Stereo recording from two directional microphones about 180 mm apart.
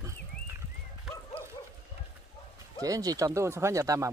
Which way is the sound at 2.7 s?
20° right (ahead or behind).